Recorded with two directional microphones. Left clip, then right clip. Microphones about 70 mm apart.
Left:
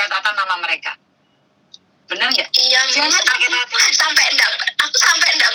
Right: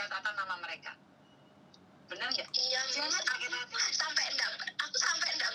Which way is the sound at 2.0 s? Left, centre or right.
Left.